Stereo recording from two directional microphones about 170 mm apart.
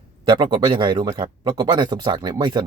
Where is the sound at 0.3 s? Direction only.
30° right (ahead or behind).